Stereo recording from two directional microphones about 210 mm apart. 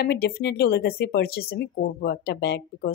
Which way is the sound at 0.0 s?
50° left (ahead or behind).